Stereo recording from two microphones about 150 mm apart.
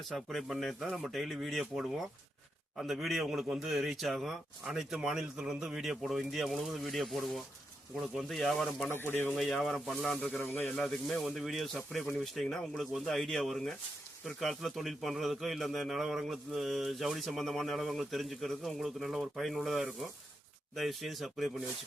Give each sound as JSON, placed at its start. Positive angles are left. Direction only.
{"t": 0.1, "sound": "a man's voice", "side_deg": 0}
{"t": 8.9, "sound": "speech", "side_deg": 15}
{"t": 9.3, "sound": "a man's voice", "side_deg": 0}
{"t": 10.8, "sound": "a man's voice", "side_deg": 5}